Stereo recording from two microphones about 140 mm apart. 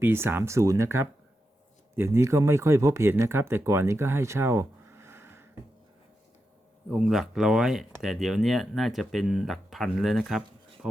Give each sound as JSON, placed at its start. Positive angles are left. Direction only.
{"t": 0.0, "sound": "speech", "side_deg": -15}
{"t": 6.9, "sound": "speech", "side_deg": 0}